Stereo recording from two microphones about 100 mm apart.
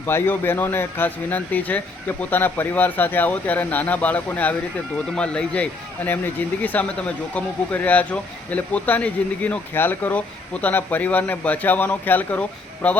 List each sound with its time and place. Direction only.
0.0 s speech: 20° left (ahead or behind)